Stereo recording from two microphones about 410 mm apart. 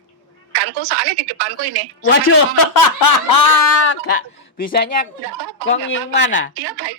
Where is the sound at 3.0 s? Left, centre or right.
Left.